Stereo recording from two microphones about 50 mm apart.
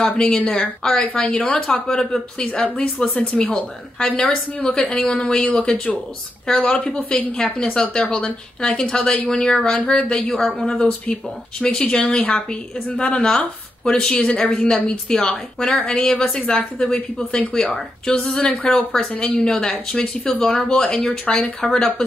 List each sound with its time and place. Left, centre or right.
0.2 s speech: centre
2.6 s a woman's voice: left
3.0 s a woman's voice: centre
10.8 s a woman's voice: left
12.2 s a woman's voice: left
12.4 s a woman's voice: centre